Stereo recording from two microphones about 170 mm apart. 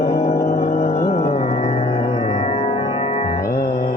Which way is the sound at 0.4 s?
50° left (ahead or behind).